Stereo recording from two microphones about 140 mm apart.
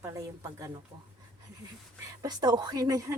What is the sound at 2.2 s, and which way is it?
Speech, 30° right (ahead or behind).